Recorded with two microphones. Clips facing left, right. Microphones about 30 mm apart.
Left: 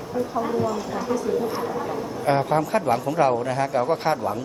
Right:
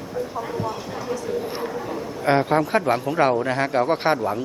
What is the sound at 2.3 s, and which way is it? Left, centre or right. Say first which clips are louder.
A man's voice: right 2 dB; right.